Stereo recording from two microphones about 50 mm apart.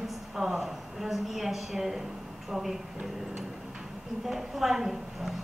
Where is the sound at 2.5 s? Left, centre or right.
Centre.